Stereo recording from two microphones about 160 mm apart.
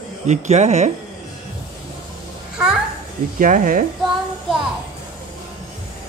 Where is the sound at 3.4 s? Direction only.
60° right (ahead or behind).